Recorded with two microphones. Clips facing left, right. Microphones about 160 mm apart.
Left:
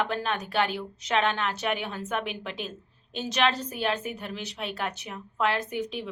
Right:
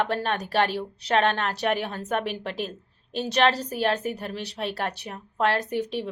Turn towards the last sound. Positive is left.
turn(degrees=-35)  # may be behind; listen again after turning